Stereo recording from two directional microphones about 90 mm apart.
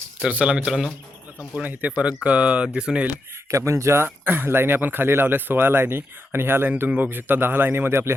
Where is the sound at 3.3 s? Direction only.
30° right (ahead or behind).